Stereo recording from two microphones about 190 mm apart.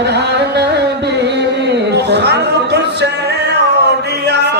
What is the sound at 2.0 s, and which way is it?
Music, 65° right (ahead or behind).